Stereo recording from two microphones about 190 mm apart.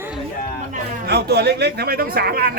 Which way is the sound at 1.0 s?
60° right (ahead or behind).